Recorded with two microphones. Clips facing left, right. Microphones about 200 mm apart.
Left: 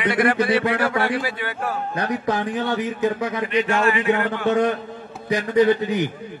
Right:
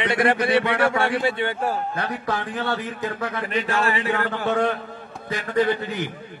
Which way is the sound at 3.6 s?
35° right (ahead or behind).